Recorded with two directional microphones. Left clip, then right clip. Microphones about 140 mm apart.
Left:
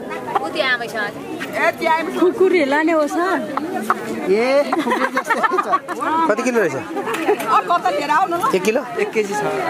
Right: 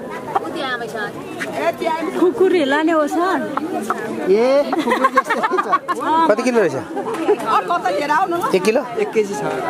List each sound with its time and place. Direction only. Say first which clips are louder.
0.3 s chatter: left 3 dB; 15° left (ahead or behind)
1.6 s speech: left 3 dB; 25° left (ahead or behind)
2.4 s a woman's voice: left 1 dB; 5° right (ahead or behind)
4.8 s speech: right 3 dB; 35° right (ahead or behind)
5.6 s speech: right 1 dB; 20° right (ahead or behind)
6.2 s speech: right 1 dB; 5° right (ahead or behind)